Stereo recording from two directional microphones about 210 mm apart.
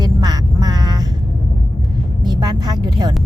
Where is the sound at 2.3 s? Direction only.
20° right (ahead or behind).